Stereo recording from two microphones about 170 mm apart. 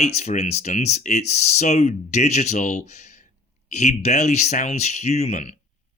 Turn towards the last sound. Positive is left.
turn(degrees=40)  # may be behind; listen again after turning